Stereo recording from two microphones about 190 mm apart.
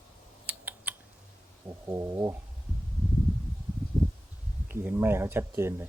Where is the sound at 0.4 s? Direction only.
10° right (ahead or behind).